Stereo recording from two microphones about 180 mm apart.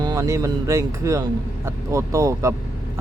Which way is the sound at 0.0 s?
20° right (ahead or behind).